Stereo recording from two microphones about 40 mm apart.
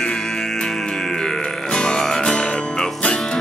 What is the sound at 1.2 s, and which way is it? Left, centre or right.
Music, left.